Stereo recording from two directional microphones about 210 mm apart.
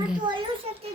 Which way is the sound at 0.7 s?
30° right (ahead or behind).